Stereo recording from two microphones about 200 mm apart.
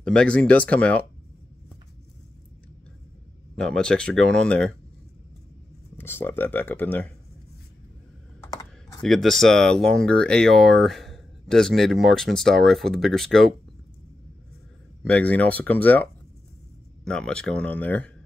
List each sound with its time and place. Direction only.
0.0 s speech: 5° left (ahead or behind)
3.5 s speech: 5° left (ahead or behind)
5.9 s speech: 10° left (ahead or behind)
8.4 s computer keyboard: 15° left (ahead or behind)
9.0 s speech: centre (ahead or behind)
15.0 s speech: 5° left (ahead or behind)